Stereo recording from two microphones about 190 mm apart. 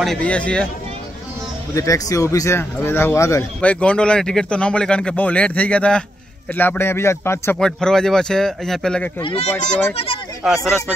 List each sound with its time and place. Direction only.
0.0 s speech: 5° left (ahead or behind)
1.8 s speech: 15° left (ahead or behind)
9.2 s speech: 30° left (ahead or behind)
10.4 s speech: centre (ahead or behind)